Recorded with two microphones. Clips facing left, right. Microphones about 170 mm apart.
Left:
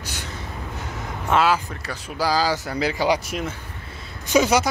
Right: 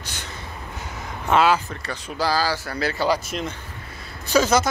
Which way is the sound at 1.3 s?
5° left (ahead or behind).